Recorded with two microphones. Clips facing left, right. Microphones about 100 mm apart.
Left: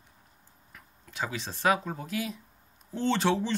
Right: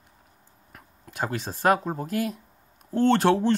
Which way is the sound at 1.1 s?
50° right (ahead or behind).